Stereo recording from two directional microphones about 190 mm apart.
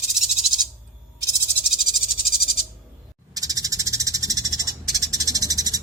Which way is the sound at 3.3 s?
20° right (ahead or behind).